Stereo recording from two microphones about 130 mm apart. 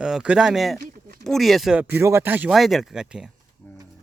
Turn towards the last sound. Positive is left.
turn(degrees=-5)  # may be behind; listen again after turning